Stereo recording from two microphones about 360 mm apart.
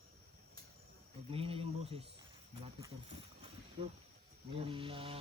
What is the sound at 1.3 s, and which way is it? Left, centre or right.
Speech, centre.